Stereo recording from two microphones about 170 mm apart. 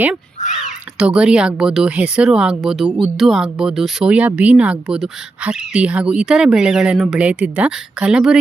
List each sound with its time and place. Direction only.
0.4 s crow: 45° left (ahead or behind)
0.9 s speech: 5° right (ahead or behind)